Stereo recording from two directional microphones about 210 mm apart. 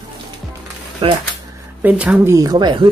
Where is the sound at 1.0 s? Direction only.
25° right (ahead or behind).